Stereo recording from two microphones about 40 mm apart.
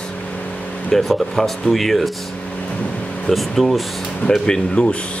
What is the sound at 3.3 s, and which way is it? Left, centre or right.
Speech, centre.